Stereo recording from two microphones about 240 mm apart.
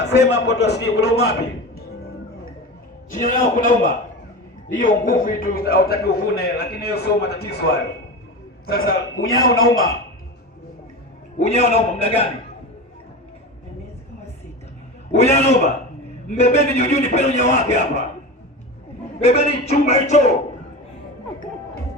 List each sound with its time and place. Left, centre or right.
0.0 s a man's voice: left
3.1 s a man's voice: left
11.3 s a man's voice: left
15.1 s a man's voice: left
19.2 s a man's voice: left